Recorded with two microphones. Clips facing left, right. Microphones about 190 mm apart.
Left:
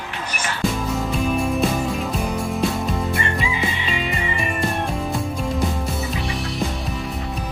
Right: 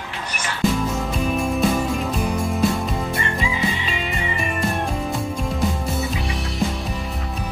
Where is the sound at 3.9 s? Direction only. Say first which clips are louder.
Left 1 dB; centre (ahead or behind).